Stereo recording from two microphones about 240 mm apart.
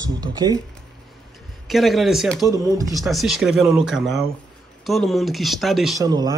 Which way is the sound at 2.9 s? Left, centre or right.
Centre.